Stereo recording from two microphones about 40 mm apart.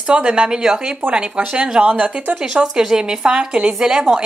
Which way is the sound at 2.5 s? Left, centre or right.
Centre.